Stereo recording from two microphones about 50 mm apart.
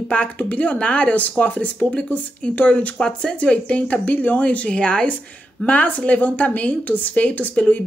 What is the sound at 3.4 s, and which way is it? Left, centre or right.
A woman's voice, left.